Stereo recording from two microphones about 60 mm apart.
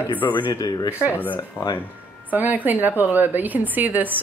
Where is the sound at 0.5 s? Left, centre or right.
Left.